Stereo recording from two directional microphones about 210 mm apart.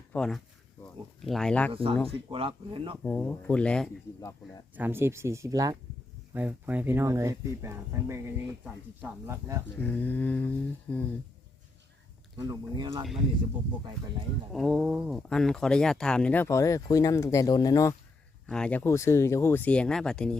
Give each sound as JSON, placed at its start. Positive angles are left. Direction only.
{"t": 0.1, "sound": "speech", "side_deg": 0}
{"t": 1.7, "sound": "speech", "side_deg": -25}
{"t": 3.0, "sound": "speech", "side_deg": 10}
{"t": 4.7, "sound": "speech", "side_deg": -10}
{"t": 9.7, "sound": "speech", "side_deg": 10}
{"t": 12.4, "sound": "speech", "side_deg": -20}
{"t": 14.5, "sound": "speech", "side_deg": 0}
{"t": 18.4, "sound": "speech", "side_deg": 5}